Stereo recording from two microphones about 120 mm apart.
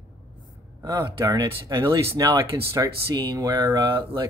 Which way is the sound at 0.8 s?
30° right (ahead or behind).